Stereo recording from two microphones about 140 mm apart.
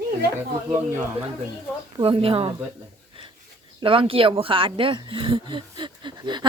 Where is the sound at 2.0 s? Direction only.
40° right (ahead or behind).